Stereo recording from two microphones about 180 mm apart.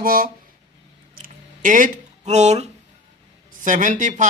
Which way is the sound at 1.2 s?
45° right (ahead or behind).